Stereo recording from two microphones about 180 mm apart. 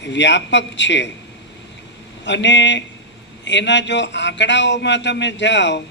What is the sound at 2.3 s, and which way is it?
A man's voice, 80° left.